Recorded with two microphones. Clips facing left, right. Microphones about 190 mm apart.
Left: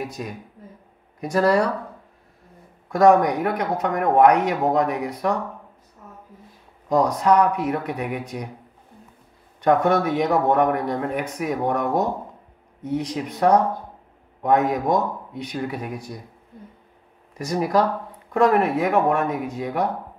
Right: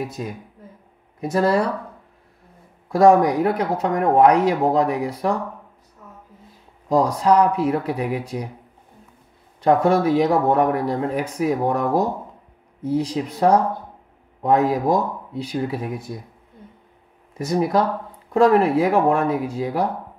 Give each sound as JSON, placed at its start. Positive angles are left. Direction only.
{"t": 0.2, "sound": "speech", "side_deg": -25}
{"t": 2.9, "sound": "speech", "side_deg": -30}
{"t": 6.9, "sound": "speech", "side_deg": -30}
{"t": 9.6, "sound": "speech", "side_deg": -30}
{"t": 14.4, "sound": "speech", "side_deg": -30}
{"t": 17.3, "sound": "speech", "side_deg": -25}